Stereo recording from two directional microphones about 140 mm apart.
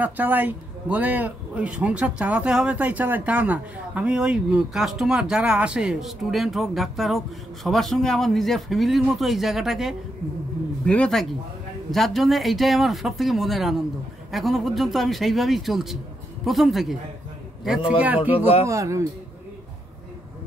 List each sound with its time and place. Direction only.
0.0 s a man's voice: 15° right (ahead or behind)
18.7 s speech: 20° right (ahead or behind)